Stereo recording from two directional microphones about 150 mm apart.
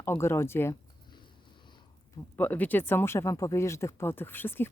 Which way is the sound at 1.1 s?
30° left (ahead or behind).